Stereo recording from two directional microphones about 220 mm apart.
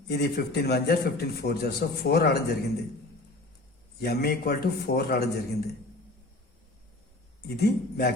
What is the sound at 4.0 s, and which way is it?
A man's voice, 45° left (ahead or behind).